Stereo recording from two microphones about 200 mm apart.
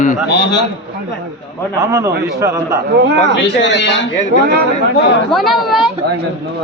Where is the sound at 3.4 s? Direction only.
60° left (ahead or behind).